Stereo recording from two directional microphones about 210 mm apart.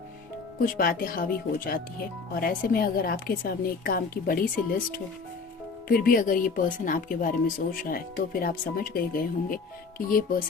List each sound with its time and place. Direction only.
0.8 s a woman's voice: 45° left (ahead or behind)
5.9 s a woman's voice: 40° left (ahead or behind)